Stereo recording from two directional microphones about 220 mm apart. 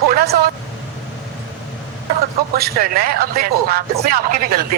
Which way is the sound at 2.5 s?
45° right (ahead or behind).